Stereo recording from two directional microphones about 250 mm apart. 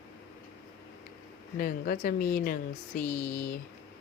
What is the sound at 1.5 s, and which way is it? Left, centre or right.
Speech, left.